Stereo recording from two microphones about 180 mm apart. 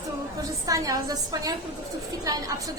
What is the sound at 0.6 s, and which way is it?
A woman's voice, 20° right (ahead or behind).